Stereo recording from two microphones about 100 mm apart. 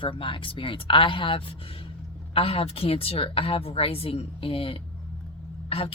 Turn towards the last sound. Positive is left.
turn(degrees=75)  # may be behind; listen again after turning